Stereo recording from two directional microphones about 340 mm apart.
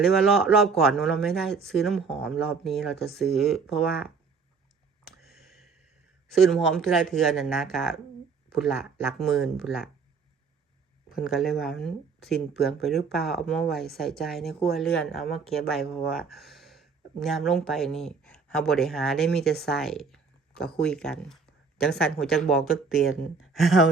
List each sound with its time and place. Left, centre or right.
0.0 s speech: centre
5.2 s a sound: centre
6.2 s speech: centre
11.2 s speech: centre